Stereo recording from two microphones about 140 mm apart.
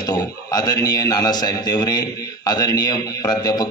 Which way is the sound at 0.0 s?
30° left (ahead or behind).